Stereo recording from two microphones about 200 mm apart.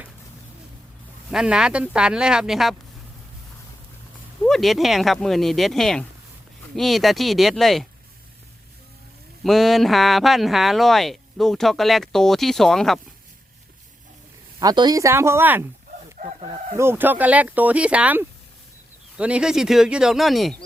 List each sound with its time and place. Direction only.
1.3 s speech: 5° right (ahead or behind)
4.4 s speech: centre (ahead or behind)
9.4 s speech: centre (ahead or behind)
14.6 s speech: 20° right (ahead or behind)
16.1 s speech: 35° right (ahead or behind)
16.7 s speech: 10° right (ahead or behind)